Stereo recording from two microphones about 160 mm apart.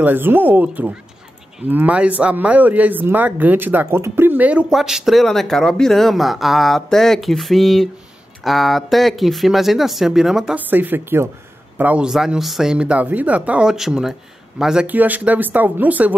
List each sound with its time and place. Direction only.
0.0 s speech: 15° right (ahead or behind)